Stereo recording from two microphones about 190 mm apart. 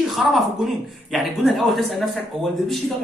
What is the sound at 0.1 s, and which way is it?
A man's voice, centre (ahead or behind).